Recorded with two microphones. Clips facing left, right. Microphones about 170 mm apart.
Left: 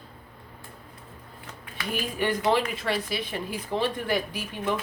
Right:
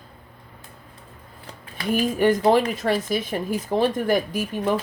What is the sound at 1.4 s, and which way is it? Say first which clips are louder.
Speech: right 7 dB; 40° right (ahead or behind).